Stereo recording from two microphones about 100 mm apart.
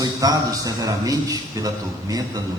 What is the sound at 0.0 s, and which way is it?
A man's voice, 35° right (ahead or behind).